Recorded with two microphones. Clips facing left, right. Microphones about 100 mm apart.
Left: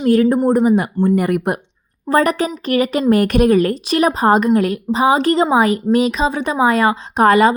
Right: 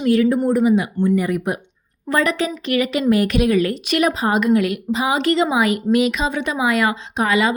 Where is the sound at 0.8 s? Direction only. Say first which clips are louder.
Left 3 dB; 50° left (ahead or behind).